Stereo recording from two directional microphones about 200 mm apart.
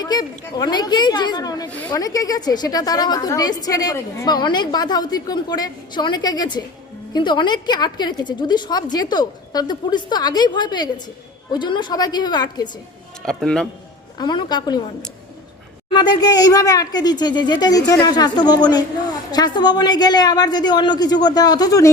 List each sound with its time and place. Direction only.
0.0 s speech: 20° left (ahead or behind)
13.2 s a man's voice: 5° left (ahead or behind)
14.2 s speech: 20° left (ahead or behind)
15.9 s speech: 20° left (ahead or behind)